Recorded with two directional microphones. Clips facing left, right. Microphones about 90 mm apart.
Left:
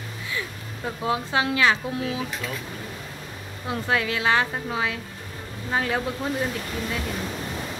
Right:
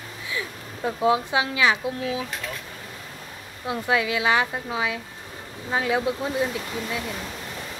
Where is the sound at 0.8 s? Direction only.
20° right (ahead or behind).